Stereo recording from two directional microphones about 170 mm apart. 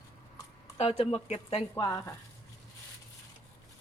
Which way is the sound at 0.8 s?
35° left (ahead or behind).